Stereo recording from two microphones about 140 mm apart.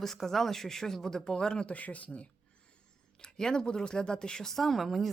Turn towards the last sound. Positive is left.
turn(degrees=0)  # may be behind; listen again after turning